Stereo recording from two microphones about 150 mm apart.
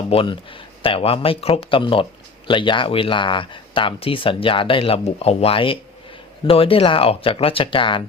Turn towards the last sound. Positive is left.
turn(degrees=35)  # may be behind; listen again after turning